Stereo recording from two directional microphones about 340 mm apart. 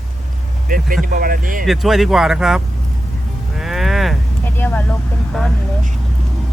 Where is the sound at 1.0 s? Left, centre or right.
Right.